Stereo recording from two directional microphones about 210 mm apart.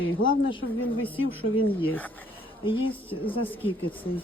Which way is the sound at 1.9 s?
10° left (ahead or behind).